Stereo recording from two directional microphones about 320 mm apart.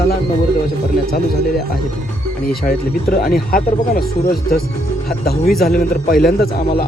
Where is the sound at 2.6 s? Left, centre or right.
Left.